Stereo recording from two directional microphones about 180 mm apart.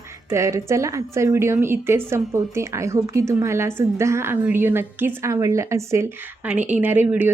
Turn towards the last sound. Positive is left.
turn(degrees=-10)  # may be behind; listen again after turning